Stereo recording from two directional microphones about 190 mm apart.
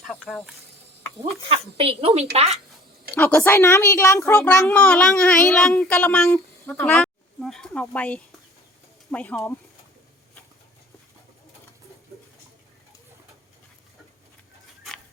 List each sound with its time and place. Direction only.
0.1 s a child's voice: centre (ahead or behind)
1.2 s speech: 30° right (ahead or behind)
3.2 s a woman's voice: 10° left (ahead or behind)
4.4 s a child's voice: 5° left (ahead or behind)